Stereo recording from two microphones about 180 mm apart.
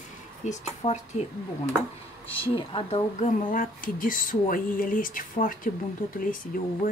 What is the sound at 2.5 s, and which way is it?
Speech, 30° left (ahead or behind).